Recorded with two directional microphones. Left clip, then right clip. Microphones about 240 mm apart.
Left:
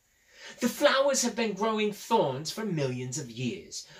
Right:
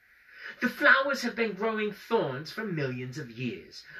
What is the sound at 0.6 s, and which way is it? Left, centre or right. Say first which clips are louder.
Speech: right 2 dB; left.